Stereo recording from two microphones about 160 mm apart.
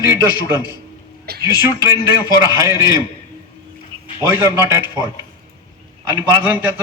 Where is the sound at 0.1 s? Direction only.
20° right (ahead or behind).